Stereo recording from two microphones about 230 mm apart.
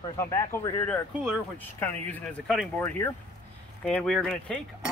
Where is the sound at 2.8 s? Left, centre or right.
Centre.